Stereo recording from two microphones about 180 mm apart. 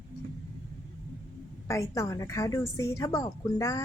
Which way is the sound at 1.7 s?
15° left (ahead or behind).